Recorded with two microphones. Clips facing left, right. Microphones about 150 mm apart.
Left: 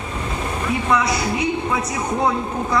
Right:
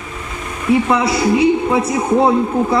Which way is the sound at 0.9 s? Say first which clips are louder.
Right 5 dB; 30° right (ahead or behind).